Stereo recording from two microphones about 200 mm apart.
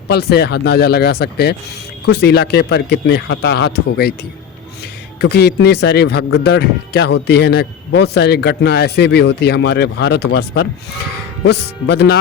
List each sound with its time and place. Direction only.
0.1 s speech: 55° left (ahead or behind)
5.2 s speech: 55° left (ahead or behind)